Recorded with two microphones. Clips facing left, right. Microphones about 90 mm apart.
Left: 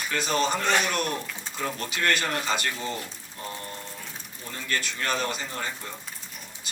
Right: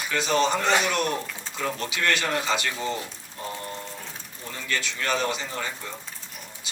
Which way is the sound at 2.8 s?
20° right (ahead or behind).